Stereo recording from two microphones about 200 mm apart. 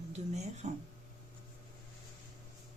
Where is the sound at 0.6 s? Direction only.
35° right (ahead or behind).